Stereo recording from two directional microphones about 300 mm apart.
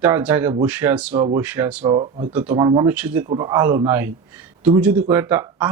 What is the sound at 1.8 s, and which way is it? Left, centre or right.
Speech, centre.